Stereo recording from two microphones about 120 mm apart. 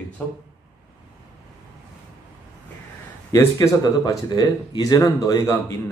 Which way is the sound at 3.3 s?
25° left (ahead or behind).